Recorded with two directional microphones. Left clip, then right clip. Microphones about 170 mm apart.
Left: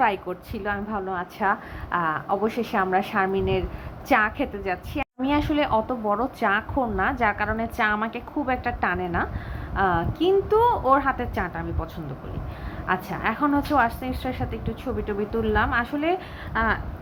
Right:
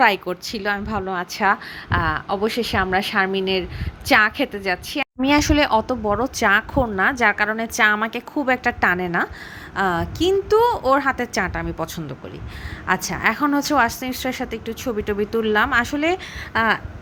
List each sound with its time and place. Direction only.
0.0 s a woman's voice: 40° right (ahead or behind)
13.1 s a woman's voice: 40° right (ahead or behind)